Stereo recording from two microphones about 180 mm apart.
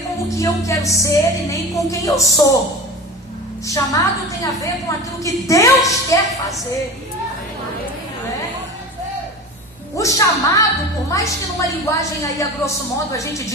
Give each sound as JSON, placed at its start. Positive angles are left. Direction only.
{"t": 0.3, "sound": "a woman's voice", "side_deg": 20}
{"t": 3.7, "sound": "a woman's voice", "side_deg": 20}
{"t": 10.0, "sound": "a woman's voice", "side_deg": 15}